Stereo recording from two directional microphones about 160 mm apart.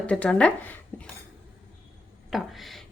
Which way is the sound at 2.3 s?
Centre (ahead or behind).